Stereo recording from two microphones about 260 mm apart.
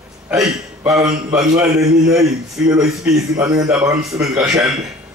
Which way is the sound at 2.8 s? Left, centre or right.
Centre.